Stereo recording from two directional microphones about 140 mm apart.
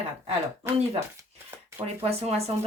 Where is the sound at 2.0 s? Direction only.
50° right (ahead or behind).